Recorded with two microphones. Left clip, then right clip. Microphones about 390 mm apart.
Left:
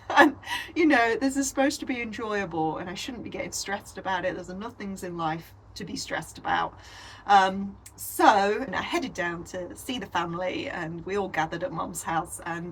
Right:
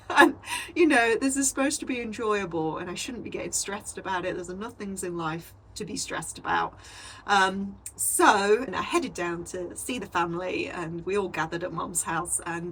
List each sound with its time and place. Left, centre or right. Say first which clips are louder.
0.1 s a woman's voice: even; left
8.1 s a woman's voice: even; left